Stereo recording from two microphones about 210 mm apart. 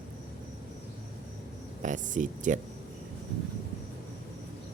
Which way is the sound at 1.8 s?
35° right (ahead or behind).